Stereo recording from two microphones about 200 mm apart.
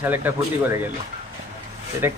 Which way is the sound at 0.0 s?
10° right (ahead or behind).